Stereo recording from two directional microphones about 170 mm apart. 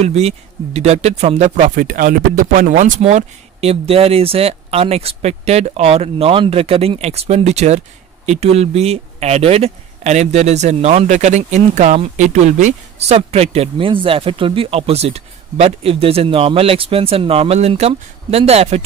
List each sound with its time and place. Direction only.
0.0 s speech: 40° right (ahead or behind)
1.8 s speech: 55° right (ahead or behind); by 18.8 s 40° right (ahead or behind)